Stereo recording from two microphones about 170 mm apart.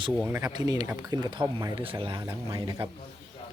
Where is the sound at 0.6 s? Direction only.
20° right (ahead or behind).